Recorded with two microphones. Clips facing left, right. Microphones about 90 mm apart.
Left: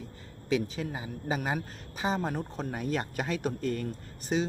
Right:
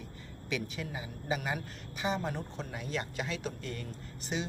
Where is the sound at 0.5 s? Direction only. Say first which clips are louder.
Left 7 dB; 35° left (ahead or behind).